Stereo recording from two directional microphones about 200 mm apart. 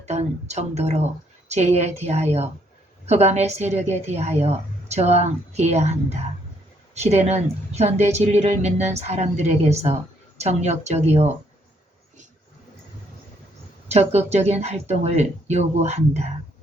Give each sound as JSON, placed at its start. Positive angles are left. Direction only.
{"t": 0.0, "sound": "a woman's voice", "side_deg": -35}
{"t": 13.8, "sound": "a woman's voice", "side_deg": -35}